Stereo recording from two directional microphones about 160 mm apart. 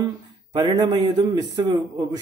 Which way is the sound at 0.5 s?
25° right (ahead or behind).